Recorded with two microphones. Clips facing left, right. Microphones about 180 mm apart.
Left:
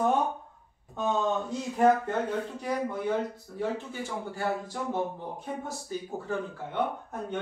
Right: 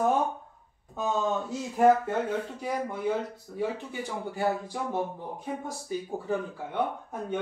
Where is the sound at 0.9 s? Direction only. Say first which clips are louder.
Even; 5° right (ahead or behind).